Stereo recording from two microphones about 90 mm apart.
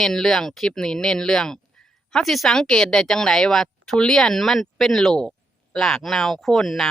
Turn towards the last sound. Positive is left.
turn(degrees=5)  # may be behind; listen again after turning